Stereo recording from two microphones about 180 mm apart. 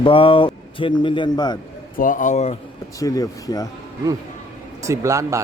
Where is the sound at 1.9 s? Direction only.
50° left (ahead or behind).